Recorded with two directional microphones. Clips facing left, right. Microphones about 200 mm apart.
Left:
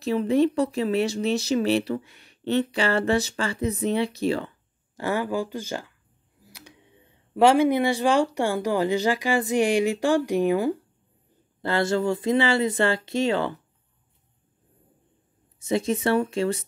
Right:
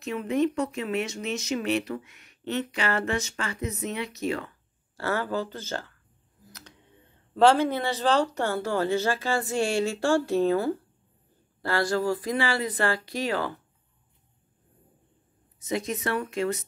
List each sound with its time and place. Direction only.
0.0 s speech: 30° left (ahead or behind)
4.9 s speech: 15° left (ahead or behind)
15.6 s speech: 30° left (ahead or behind)